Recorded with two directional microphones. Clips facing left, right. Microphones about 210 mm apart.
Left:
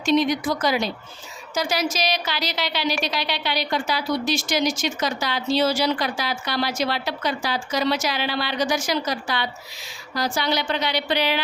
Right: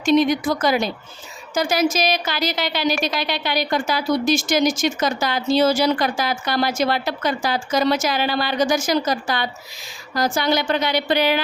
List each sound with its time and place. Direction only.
0.0 s a woman's voice: 50° right (ahead or behind)